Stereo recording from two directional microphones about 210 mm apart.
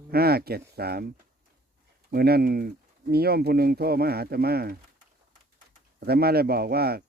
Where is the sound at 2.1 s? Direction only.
50° right (ahead or behind).